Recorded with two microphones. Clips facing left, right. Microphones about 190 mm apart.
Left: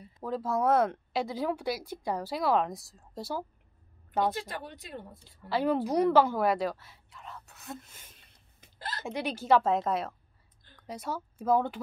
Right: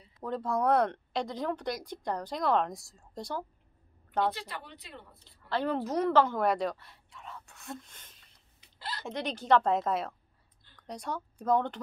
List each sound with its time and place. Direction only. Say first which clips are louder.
0.2 s speech: left 1 dB; 5° left (ahead or behind)
4.3 s speech: left 3 dB; 45° left (ahead or behind)
5.2 s speech: left 3 dB; 10° left (ahead or behind)
8.5 s hiccup: left 1 dB; 45° left (ahead or behind)
9.0 s speech: left 2 dB; 10° left (ahead or behind)